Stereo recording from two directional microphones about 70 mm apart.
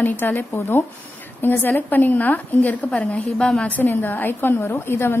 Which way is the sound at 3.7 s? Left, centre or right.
Left.